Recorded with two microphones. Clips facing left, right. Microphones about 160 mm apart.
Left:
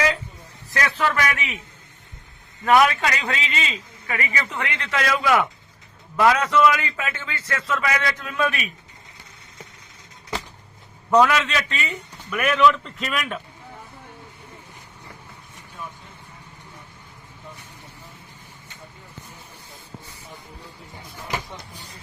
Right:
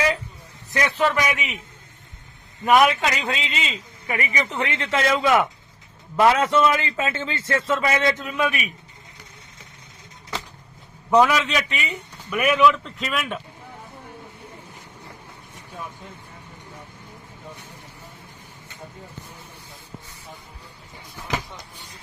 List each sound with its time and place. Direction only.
0.7 s a man's voice: 15° right (ahead or behind)
2.6 s a man's voice: 20° right (ahead or behind)
11.1 s a man's voice: 5° right (ahead or behind)